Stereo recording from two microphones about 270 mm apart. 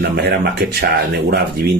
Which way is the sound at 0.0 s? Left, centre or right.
Right.